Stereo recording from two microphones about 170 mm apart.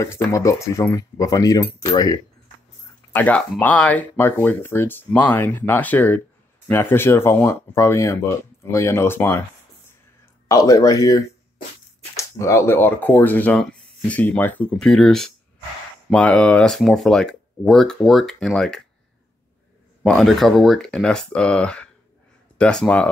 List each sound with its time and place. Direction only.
0.0 s speech: 15° left (ahead or behind)
3.1 s speech: 10° left (ahead or behind)
10.5 s speech: 20° left (ahead or behind); by 18.9 s 5° left (ahead or behind)
20.0 s speech: centre (ahead or behind)